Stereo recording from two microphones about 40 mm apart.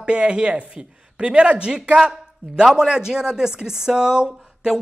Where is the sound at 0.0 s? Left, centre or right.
Right.